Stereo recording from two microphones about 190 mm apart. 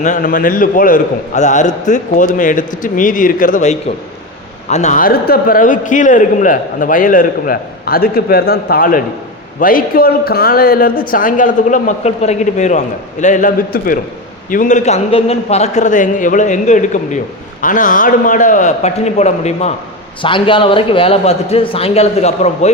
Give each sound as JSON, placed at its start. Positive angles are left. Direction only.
{"t": 0.0, "sound": "a man's voice", "side_deg": 40}